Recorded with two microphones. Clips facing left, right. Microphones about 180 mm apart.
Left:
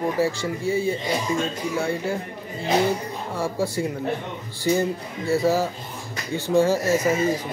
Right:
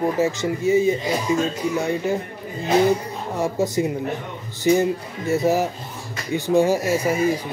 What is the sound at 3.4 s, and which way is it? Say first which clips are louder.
Speech: right 4 dB; 20° right (ahead or behind).